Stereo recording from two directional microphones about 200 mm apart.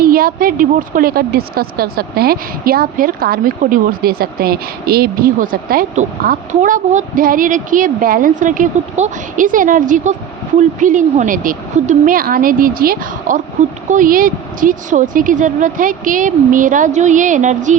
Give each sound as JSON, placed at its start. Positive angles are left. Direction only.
{"t": 0.0, "sound": "a woman's voice", "side_deg": -45}